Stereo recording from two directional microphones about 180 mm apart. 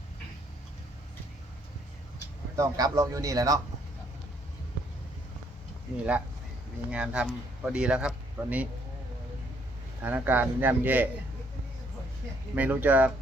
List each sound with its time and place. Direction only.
2.6 s a man's voice: 20° right (ahead or behind)
6.9 s speech: 5° right (ahead or behind)
10.0 s speech: 10° right (ahead or behind)
12.5 s speech: 10° right (ahead or behind)